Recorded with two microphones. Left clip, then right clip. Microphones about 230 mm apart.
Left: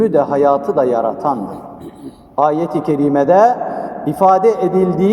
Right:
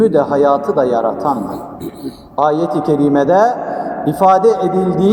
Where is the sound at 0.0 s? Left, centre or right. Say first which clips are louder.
Right 1 dB; left.